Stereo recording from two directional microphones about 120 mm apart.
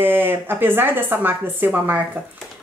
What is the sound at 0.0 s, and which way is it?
Speech, 15° right (ahead or behind).